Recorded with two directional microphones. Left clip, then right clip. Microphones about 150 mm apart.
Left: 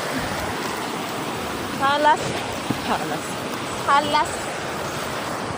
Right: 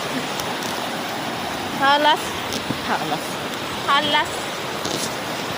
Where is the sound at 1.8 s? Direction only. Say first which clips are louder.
Right 2 dB; 40° right (ahead or behind).